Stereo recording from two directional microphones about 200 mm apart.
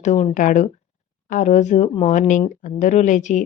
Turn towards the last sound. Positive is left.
turn(degrees=40)  # may be behind; listen again after turning